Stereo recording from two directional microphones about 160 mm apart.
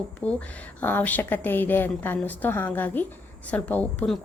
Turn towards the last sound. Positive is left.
turn(degrees=5)  # may be behind; listen again after turning